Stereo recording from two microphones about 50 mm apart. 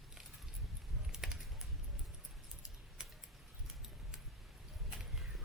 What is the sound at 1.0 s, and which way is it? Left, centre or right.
Typing, centre.